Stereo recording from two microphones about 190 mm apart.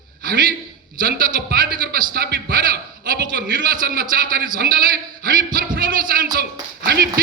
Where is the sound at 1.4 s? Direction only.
50° right (ahead or behind).